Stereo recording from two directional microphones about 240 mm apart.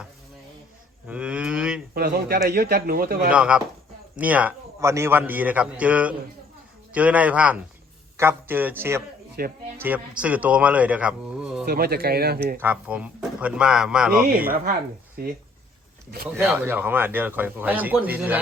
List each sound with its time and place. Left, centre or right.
1.0 s cattle: centre
1.9 s speech: right
3.3 s a man's voice: centre
9.4 s speech: right
9.7 s speech: centre
11.6 s speech: right
12.5 s speech: centre
15.2 s speech: right
16.4 s a man's voice: centre